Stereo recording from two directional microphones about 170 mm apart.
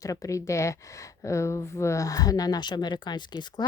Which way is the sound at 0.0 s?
20° left (ahead or behind).